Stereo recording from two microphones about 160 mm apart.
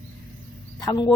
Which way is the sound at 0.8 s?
25° left (ahead or behind).